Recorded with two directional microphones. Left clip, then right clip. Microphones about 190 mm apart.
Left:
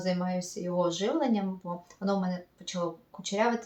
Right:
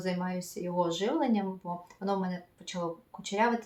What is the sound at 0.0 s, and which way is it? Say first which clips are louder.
Speech: left 3 dB; 5° right (ahead or behind).